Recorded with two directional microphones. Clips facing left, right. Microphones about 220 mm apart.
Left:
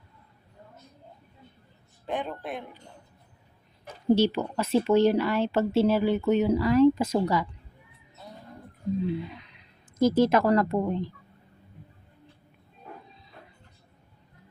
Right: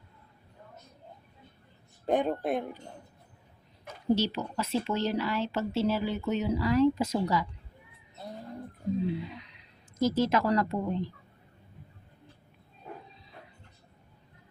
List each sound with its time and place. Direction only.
2.0 s a man's voice: 40° right (ahead or behind)
4.1 s speech: 55° left (ahead or behind)
10.0 s a woman's voice: 55° left (ahead or behind)